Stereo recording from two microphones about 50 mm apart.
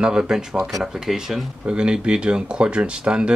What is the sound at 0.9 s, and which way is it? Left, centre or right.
Speech, centre.